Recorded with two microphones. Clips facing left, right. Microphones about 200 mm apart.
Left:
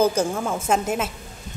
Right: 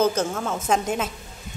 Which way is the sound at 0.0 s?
10° left (ahead or behind).